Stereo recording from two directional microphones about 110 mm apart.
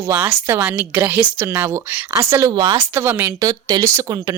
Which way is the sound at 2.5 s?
40° right (ahead or behind).